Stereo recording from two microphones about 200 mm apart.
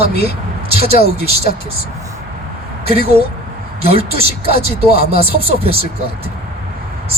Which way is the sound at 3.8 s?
30° right (ahead or behind).